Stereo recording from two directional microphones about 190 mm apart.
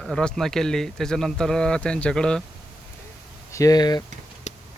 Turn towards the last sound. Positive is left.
turn(degrees=35)  # may be behind; listen again after turning